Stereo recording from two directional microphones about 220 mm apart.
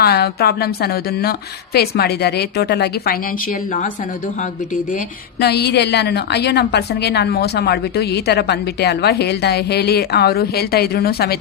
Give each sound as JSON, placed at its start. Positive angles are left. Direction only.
{"t": 0.0, "sound": "a woman's voice", "side_deg": 45}
{"t": 5.4, "sound": "a woman's voice", "side_deg": 50}